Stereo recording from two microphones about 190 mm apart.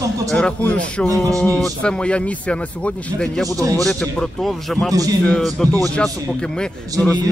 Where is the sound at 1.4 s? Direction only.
5° left (ahead or behind).